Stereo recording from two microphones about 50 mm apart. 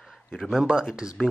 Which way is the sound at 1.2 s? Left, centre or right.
Centre.